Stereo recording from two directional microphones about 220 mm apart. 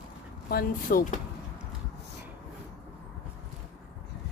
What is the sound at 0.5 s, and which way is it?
Speech, 40° left (ahead or behind).